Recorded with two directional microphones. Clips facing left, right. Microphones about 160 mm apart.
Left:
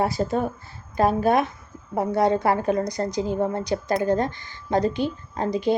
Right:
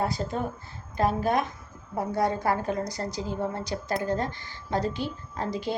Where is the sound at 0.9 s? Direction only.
15° left (ahead or behind).